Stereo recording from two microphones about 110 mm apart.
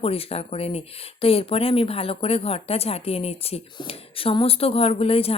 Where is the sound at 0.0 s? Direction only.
65° left (ahead or behind).